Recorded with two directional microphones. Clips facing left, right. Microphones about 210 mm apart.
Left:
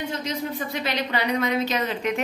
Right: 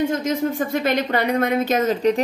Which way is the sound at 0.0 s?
50° right (ahead or behind).